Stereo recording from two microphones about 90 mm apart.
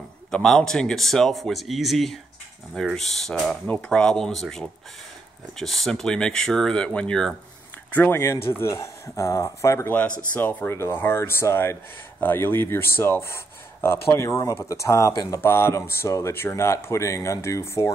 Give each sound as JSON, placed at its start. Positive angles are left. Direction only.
{"t": 0.3, "sound": "speech", "side_deg": 5}
{"t": 7.9, "sound": "speech", "side_deg": 25}
{"t": 10.3, "sound": "speech", "side_deg": 15}